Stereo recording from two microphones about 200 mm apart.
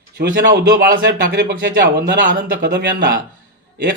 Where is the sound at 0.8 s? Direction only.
45° right (ahead or behind).